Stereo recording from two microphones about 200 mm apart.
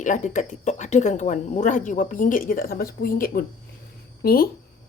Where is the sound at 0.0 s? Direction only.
40° left (ahead or behind).